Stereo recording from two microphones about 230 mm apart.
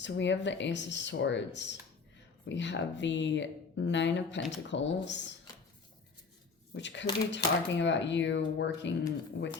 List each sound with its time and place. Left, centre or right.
0.0 s speech: left
6.7 s speech: left